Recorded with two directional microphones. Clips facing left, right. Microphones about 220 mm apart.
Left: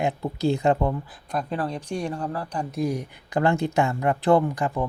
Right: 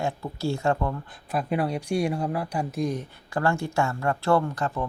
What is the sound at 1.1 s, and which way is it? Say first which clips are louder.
Speech: right 1 dB; centre (ahead or behind).